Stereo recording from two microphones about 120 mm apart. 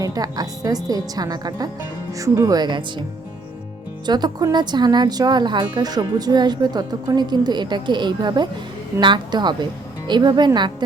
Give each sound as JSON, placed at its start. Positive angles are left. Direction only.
{"t": 0.0, "sound": "a woman's voice", "side_deg": -30}
{"t": 2.6, "sound": "speech", "side_deg": -40}
{"t": 4.0, "sound": "speech", "side_deg": -35}